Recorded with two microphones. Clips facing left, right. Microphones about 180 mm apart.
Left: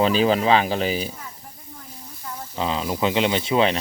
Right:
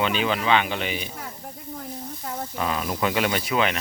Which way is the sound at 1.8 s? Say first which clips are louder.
Right 6 dB; 55° right (ahead or behind).